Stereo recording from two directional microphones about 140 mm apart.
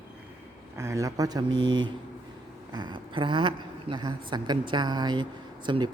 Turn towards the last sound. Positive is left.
turn(degrees=-35)  # may be behind; listen again after turning